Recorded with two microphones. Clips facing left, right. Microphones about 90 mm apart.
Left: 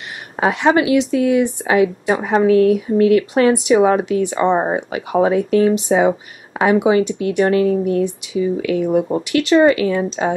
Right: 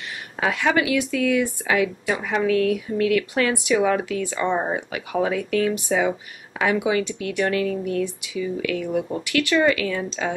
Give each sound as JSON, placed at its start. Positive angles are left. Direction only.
{"t": 0.4, "sound": "speech", "side_deg": 30}